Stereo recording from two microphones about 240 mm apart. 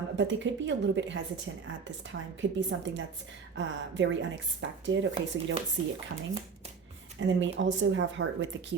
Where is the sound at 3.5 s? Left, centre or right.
Right.